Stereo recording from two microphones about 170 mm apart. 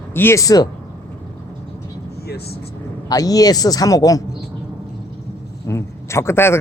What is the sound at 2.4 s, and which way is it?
Speech, 70° left (ahead or behind).